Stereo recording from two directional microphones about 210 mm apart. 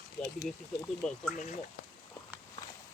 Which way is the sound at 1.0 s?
5° left (ahead or behind).